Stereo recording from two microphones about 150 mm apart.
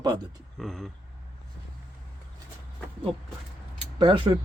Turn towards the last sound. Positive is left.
turn(degrees=-35)  # may be behind; listen again after turning